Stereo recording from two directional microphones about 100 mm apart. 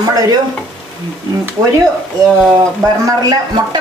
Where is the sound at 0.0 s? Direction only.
40° right (ahead or behind).